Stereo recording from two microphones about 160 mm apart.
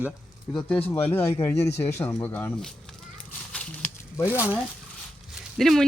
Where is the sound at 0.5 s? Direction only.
10° left (ahead or behind).